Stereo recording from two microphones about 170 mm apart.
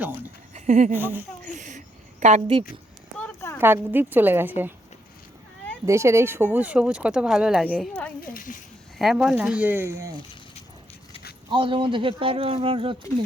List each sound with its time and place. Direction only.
0.0 s a sound: 10° right (ahead or behind)
0.5 s speech: 45° right (ahead or behind)
0.9 s speech: 10° right (ahead or behind)
1.5 s a sound: 50° right (ahead or behind)
2.2 s speech: 35° right (ahead or behind)
3.2 s a sound: 10° left (ahead or behind)
3.6 s speech: 10° right (ahead or behind)
5.8 s speech: 15° right (ahead or behind)
8.2 s speech: 55° left (ahead or behind)
9.0 s speech: centre (ahead or behind)
11.5 s speech: 30° right (ahead or behind)